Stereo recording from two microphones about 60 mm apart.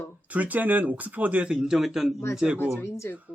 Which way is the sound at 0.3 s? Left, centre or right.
Right.